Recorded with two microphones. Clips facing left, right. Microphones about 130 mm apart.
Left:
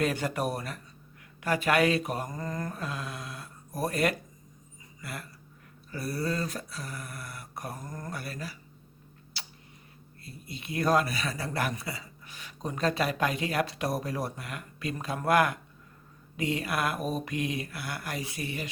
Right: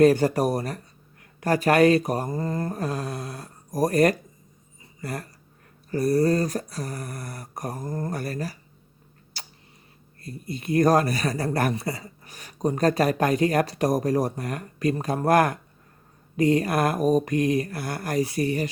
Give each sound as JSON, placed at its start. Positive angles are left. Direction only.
{"t": 0.0, "sound": "speech", "side_deg": -40}
{"t": 9.4, "sound": "tick-tock", "side_deg": -45}
{"t": 10.2, "sound": "speech", "side_deg": -45}